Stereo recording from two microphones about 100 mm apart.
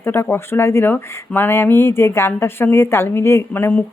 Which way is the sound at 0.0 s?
20° left (ahead or behind).